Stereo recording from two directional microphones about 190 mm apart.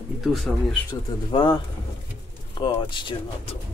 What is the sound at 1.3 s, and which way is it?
Speech, 25° left (ahead or behind).